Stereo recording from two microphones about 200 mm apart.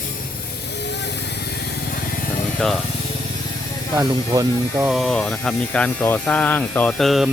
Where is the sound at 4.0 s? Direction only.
15° right (ahead or behind).